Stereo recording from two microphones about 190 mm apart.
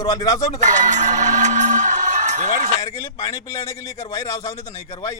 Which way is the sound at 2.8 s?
15° left (ahead or behind).